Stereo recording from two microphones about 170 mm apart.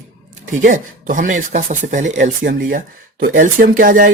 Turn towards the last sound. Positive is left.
turn(degrees=-55)  # may be behind; listen again after turning